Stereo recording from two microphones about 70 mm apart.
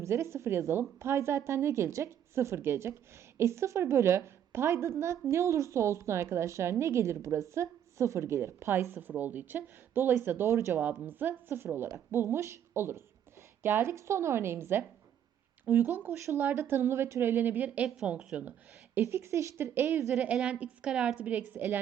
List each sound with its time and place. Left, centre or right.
0.0 s a woman's voice: right
10.8 s a woman's voice: right
18.9 s a woman's voice: right
20.2 s a woman's voice: centre